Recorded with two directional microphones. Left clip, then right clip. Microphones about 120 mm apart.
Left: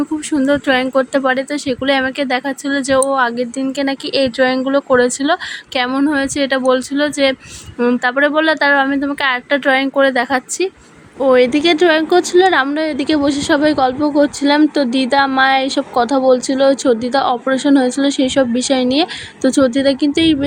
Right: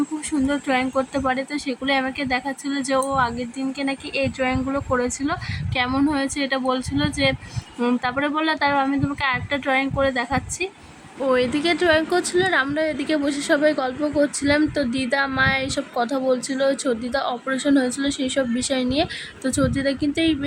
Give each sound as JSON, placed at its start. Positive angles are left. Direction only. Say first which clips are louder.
{"t": 0.3, "sound": "speech", "louder": "left 9 dB", "side_deg": 40}
{"t": 5.9, "sound": "speech", "louder": "left 6 dB", "side_deg": 35}
{"t": 11.2, "sound": "a woman's voice", "louder": "left 9 dB", "side_deg": 30}